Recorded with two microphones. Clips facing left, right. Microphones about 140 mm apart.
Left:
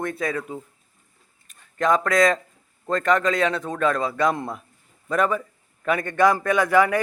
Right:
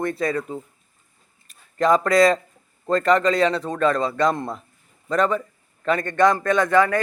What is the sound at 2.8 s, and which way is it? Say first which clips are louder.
Speech: right 3 dB; centre (ahead or behind).